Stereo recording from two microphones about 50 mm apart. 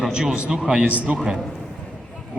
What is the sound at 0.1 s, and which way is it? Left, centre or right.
A man's voice, centre.